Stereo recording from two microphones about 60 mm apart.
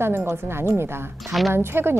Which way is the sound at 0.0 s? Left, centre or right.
Right.